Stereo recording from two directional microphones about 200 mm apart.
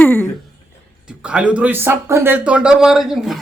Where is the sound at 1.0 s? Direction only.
5° right (ahead or behind).